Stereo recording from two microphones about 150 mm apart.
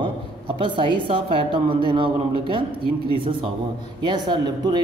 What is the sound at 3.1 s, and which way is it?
A woman's voice, 35° right (ahead or behind).